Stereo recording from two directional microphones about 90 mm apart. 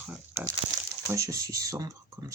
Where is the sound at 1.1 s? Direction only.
35° right (ahead or behind).